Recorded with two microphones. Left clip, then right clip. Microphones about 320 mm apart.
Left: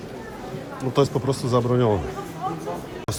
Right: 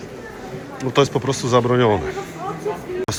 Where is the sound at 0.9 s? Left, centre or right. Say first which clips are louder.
Right 4 dB; centre.